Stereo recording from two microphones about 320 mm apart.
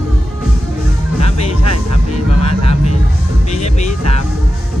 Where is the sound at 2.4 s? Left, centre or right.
Centre.